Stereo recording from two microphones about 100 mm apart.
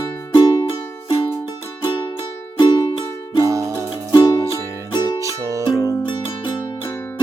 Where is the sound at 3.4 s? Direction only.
35° right (ahead or behind).